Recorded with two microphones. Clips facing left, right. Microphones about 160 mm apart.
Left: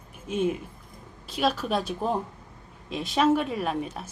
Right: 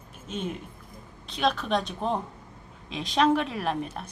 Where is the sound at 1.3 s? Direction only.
5° left (ahead or behind).